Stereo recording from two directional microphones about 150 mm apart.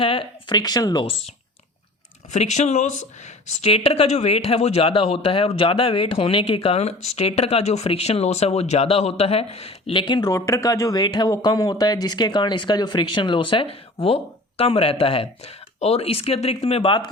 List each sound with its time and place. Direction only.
0.0 s speech: 35° left (ahead or behind)
2.3 s speech: 50° left (ahead or behind); by 17.1 s 35° left (ahead or behind)